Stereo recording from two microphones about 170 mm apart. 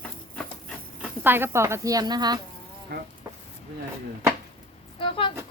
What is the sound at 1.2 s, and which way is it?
A woman's voice, 10° right (ahead or behind).